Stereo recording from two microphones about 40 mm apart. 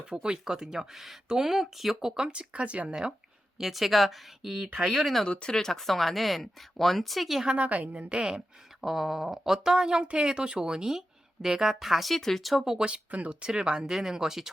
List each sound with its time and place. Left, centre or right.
0.0 s speech: right; by 2.0 s centre
2.0 s speech: centre
3.6 s speech: centre
5.5 s speech: centre
5.9 s speech: centre
7.4 s a woman's voice: right
8.8 s speech: centre
10.0 s speech: right; by 12.6 s centre
12.8 s a woman's voice: right
13.4 s speech: right